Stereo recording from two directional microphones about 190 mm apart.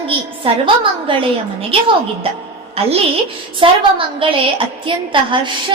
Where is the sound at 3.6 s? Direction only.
30° right (ahead or behind).